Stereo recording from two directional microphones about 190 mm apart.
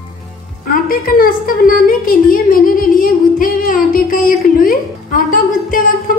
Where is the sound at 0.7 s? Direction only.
50° left (ahead or behind).